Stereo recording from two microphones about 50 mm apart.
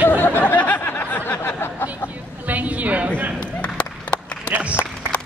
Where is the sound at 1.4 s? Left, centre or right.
Left.